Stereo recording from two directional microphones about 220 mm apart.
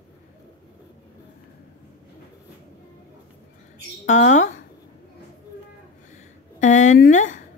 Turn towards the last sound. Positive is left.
turn(degrees=35)  # may be behind; listen again after turning